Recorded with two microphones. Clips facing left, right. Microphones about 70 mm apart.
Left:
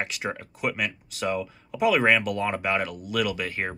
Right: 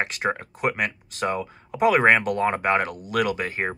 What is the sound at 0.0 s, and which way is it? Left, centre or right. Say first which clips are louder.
Speech: right 5 dB; right.